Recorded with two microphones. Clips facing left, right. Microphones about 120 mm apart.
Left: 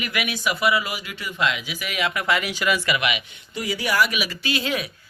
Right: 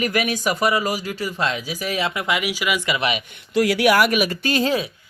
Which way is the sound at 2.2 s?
15° right (ahead or behind).